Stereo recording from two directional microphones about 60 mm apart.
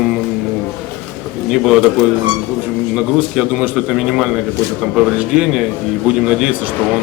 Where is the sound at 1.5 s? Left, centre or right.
Centre.